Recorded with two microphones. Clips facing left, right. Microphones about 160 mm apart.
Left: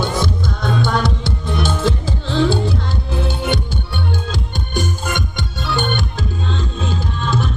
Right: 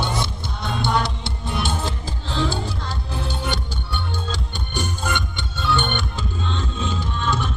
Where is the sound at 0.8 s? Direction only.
90° left.